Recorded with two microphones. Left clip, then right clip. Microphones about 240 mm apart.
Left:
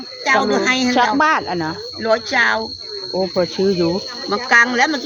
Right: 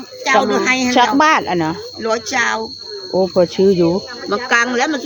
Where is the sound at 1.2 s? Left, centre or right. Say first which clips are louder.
Right 3 dB; centre.